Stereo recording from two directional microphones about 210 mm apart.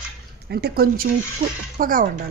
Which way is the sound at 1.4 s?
25° right (ahead or behind).